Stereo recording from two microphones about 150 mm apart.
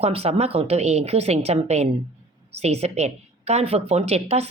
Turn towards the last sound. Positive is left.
turn(degrees=-45)  # may be behind; listen again after turning